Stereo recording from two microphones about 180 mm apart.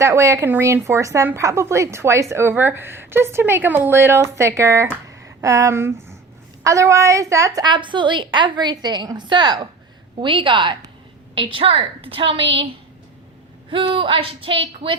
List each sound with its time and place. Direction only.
0.0 s a woman's voice: 15° right (ahead or behind)
13.7 s a woman's voice: 30° right (ahead or behind)